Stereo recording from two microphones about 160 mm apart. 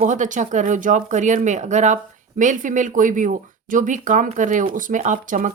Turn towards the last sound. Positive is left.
turn(degrees=-55)  # may be behind; listen again after turning